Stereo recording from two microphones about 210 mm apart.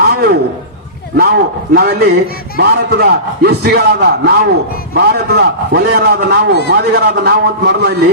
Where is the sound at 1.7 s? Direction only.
45° right (ahead or behind).